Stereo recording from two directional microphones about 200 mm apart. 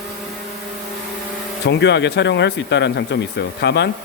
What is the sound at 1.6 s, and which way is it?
Speech, 60° left (ahead or behind).